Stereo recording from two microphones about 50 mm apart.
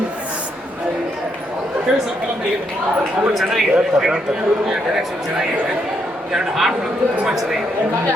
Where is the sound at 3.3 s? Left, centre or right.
Centre.